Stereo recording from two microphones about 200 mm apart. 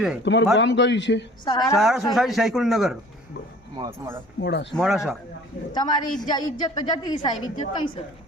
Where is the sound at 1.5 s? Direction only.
20° left (ahead or behind).